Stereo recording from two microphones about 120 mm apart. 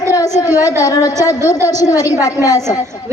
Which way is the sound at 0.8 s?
30° left (ahead or behind).